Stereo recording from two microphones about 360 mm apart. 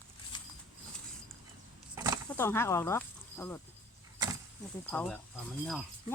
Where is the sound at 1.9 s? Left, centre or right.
Centre.